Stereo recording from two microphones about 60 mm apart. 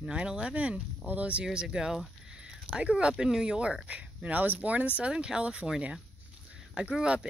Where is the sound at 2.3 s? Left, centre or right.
Centre.